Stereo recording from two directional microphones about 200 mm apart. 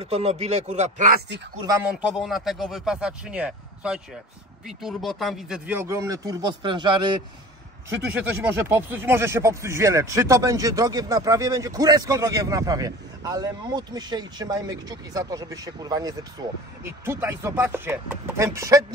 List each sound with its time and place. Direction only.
0.0 s speech: 30° right (ahead or behind)
1.9 s speech: 5° right (ahead or behind)
5.7 s speech: 15° right (ahead or behind)
8.1 s speech: 10° right (ahead or behind)